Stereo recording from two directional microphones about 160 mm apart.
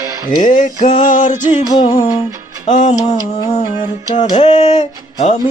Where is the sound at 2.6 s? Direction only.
50° left (ahead or behind).